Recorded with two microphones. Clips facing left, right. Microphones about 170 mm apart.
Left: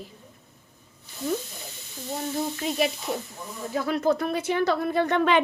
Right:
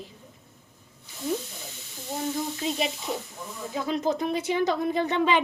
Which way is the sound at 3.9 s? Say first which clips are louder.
Left 2 dB; 20° right (ahead or behind).